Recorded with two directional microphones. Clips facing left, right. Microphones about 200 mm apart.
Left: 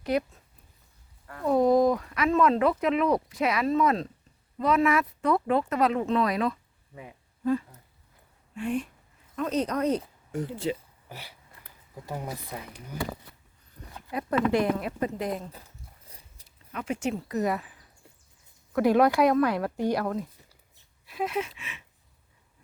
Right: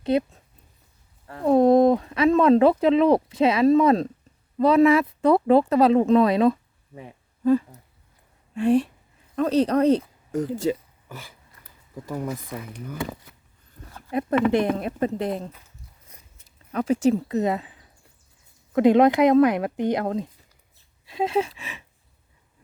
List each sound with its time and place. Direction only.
0.0 s speech: 25° right (ahead or behind)
1.3 s a sound: 30° right (ahead or behind)
4.6 s speech: 30° right (ahead or behind)
14.1 s speech: 25° right (ahead or behind)
16.4 s a sound: 35° left (ahead or behind)
16.7 s speech: 35° right (ahead or behind)
17.3 s speech: 25° right (ahead or behind)